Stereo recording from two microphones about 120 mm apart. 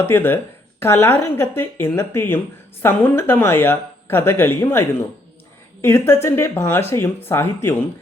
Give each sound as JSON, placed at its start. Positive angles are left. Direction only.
{"t": 0.0, "sound": "speech", "side_deg": 20}